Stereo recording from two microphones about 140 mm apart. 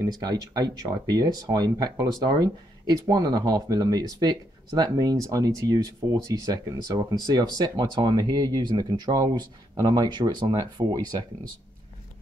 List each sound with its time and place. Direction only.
0.0 s speech: 30° right (ahead or behind)